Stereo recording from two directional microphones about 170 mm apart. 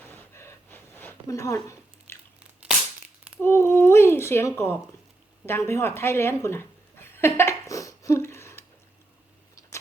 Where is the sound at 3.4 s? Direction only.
15° left (ahead or behind).